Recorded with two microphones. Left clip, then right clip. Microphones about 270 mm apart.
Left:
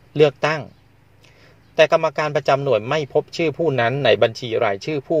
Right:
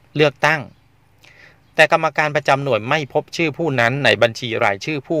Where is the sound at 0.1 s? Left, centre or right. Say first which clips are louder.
Right 1 dB; right.